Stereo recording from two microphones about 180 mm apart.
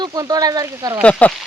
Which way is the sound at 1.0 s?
5° left (ahead or behind).